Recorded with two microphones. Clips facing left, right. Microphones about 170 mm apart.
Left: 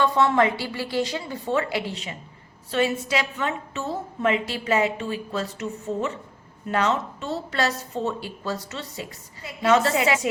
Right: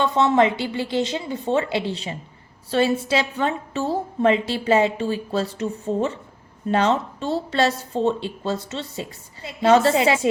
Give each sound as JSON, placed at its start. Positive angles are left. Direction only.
{"t": 0.0, "sound": "a woman's voice", "side_deg": -20}